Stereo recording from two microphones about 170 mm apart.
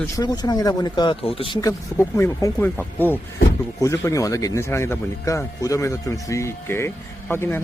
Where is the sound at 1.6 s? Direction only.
15° left (ahead or behind).